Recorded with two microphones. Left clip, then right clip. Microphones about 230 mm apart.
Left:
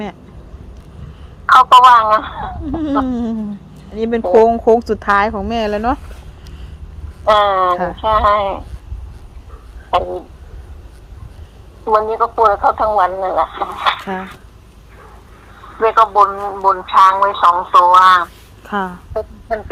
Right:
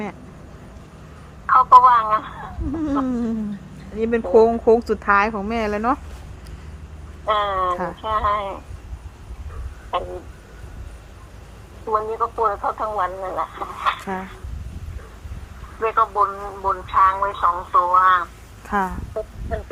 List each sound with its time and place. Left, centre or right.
1.5 s speech: left
3.1 s a woman's voice: left
7.3 s speech: left
9.9 s speech: left
11.9 s speech: left
15.8 s speech: left
18.7 s a woman's voice: left
19.1 s speech: left